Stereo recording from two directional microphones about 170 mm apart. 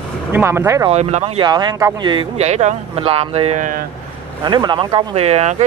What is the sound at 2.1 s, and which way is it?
Speech, 40° right (ahead or behind).